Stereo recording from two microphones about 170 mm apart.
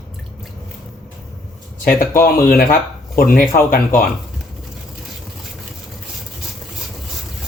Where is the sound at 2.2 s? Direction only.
60° left (ahead or behind).